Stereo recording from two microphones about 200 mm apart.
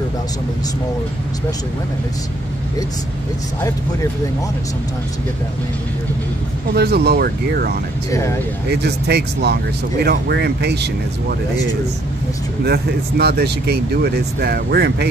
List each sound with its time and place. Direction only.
6.7 s speech: 50° right (ahead or behind)
8.1 s speech: 15° left (ahead or behind)
8.6 s speech: 55° right (ahead or behind)
12.6 s speech: 50° right (ahead or behind)